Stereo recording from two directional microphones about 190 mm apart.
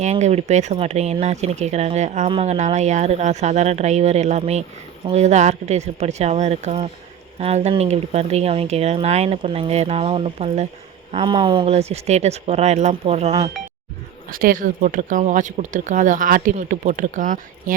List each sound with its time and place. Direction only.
0.0 s speech: 35° right (ahead or behind)
11.1 s speech: 25° right (ahead or behind)
14.3 s speech: 50° right (ahead or behind)